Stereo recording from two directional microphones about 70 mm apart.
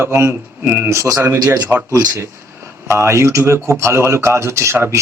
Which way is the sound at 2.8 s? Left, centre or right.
Right.